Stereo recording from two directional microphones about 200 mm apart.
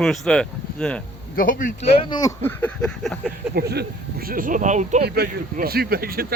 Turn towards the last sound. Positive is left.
turn(degrees=-50)  # may be behind; listen again after turning